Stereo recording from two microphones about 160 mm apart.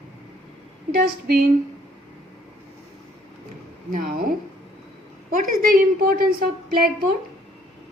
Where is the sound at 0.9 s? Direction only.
70° right (ahead or behind).